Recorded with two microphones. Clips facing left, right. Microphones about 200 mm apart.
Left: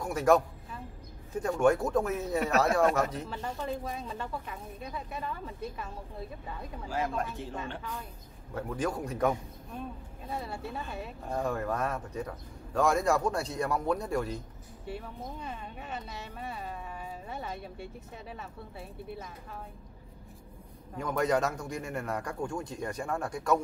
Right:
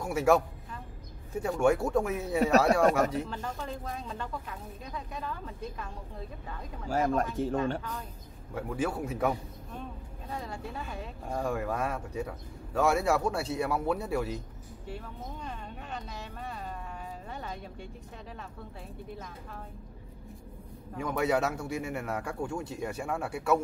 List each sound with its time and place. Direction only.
0.0 s a woman's voice: 10° right (ahead or behind)
1.4 s speech: 10° right (ahead or behind)
3.3 s speech: 5° left (ahead or behind)
6.9 s speech: 45° right (ahead or behind)
8.5 s speech: 5° right (ahead or behind)
10.2 s speech: 5° left (ahead or behind)
11.2 s speech: 10° right (ahead or behind)
14.9 s speech: 5° left (ahead or behind)
21.0 s speech: 10° right (ahead or behind)